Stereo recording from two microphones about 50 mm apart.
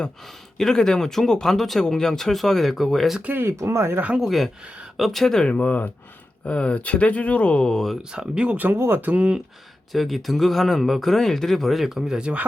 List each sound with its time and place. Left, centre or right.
0.5 s speech: centre
3.3 s speech: right
4.2 s speech: centre
5.5 s speech: left
7.6 s speech: centre
8.1 s speech: centre
8.7 s speech: right
9.0 s speech: right
9.9 s speech: centre